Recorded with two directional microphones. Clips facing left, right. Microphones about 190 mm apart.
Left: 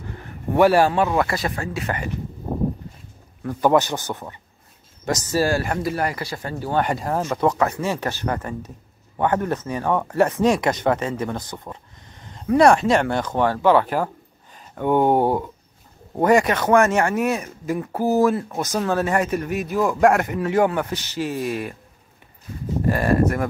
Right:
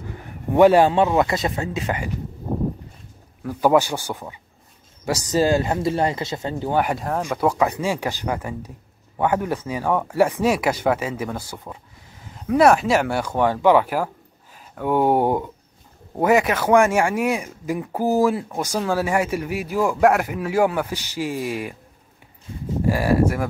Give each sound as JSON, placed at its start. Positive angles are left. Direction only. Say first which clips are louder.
{"t": 0.6, "sound": "speech", "louder": "right 2 dB", "side_deg": -20}
{"t": 3.4, "sound": "speech", "louder": "even", "side_deg": -10}
{"t": 6.9, "sound": "speech", "louder": "left 1 dB", "side_deg": 0}
{"t": 7.2, "sound": "speech", "louder": "right 1 dB", "side_deg": -10}
{"t": 16.2, "sound": "speech", "louder": "left 1 dB", "side_deg": -5}
{"t": 22.8, "sound": "speech", "louder": "even", "side_deg": -10}